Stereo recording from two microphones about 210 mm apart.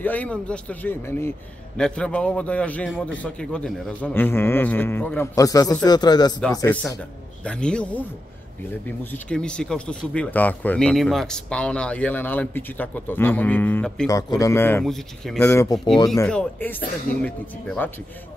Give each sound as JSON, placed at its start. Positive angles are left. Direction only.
{"t": 0.0, "sound": "a man's voice", "side_deg": 5}